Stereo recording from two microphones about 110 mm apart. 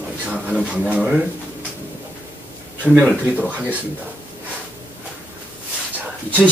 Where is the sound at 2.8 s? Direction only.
10° right (ahead or behind).